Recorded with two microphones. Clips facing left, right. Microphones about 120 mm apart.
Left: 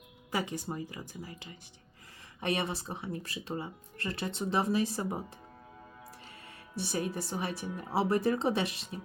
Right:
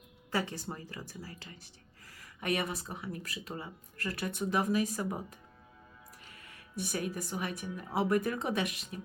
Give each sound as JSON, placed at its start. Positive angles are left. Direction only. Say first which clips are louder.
{"t": 0.3, "sound": "a woman's voice", "louder": "left 1 dB", "side_deg": 15}
{"t": 6.7, "sound": "speech", "louder": "left 2 dB", "side_deg": 30}